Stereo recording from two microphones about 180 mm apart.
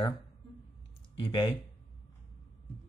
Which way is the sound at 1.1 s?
30° left (ahead or behind).